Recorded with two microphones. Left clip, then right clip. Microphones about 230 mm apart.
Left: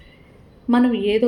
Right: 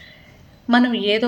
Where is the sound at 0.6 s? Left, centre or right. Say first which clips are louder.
Right 1 dB; centre.